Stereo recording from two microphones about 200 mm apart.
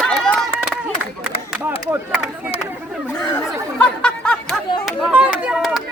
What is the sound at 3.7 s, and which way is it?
Chatter, 5° left (ahead or behind).